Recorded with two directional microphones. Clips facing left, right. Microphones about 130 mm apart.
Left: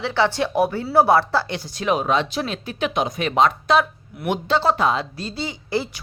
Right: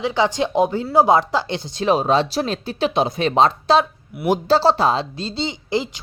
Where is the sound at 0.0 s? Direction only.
15° right (ahead or behind).